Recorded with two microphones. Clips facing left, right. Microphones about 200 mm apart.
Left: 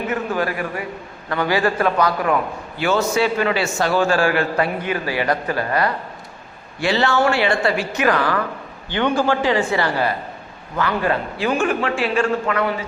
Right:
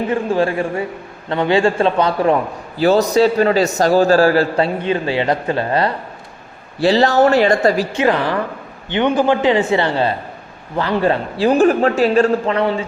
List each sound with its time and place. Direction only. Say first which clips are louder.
0.1 s a man's voice: right 6 dB; 30° right (ahead or behind)
7.9 s a man's voice: right 3 dB; 25° right (ahead or behind)